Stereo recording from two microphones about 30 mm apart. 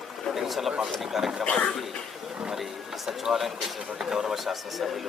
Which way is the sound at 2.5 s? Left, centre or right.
Centre.